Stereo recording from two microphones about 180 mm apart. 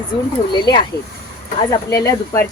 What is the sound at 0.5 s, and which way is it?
Speech, 25° left (ahead or behind).